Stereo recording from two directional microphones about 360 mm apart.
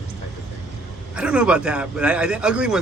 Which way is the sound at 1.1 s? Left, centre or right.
Centre.